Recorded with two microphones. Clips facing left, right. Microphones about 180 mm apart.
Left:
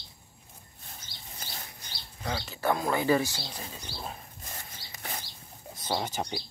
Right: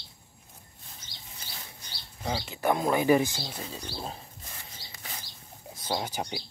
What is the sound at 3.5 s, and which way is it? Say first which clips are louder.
Speech: right 3 dB; 30° right (ahead or behind).